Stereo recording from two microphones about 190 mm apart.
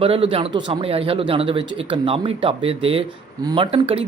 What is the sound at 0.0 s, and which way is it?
Speech, 30° right (ahead or behind).